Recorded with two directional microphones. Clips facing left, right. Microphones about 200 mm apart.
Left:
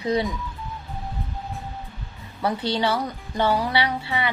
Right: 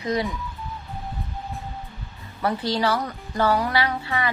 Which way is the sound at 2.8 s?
15° left (ahead or behind).